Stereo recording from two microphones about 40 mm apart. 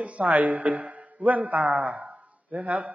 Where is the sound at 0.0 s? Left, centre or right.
Right.